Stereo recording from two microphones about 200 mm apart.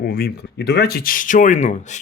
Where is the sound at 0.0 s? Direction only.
50° left (ahead or behind).